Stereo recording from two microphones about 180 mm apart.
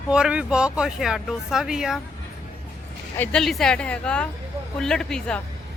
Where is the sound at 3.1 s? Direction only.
5° left (ahead or behind).